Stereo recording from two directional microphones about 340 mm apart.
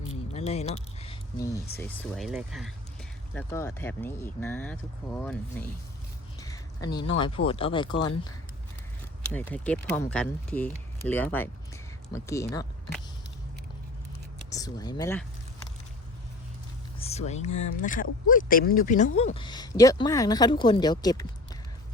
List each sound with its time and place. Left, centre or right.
0.3 s speech: centre
6.4 s a sound: centre
7.2 s speech: centre
9.3 s speech: centre
14.5 s speech: centre
17.0 s speech: centre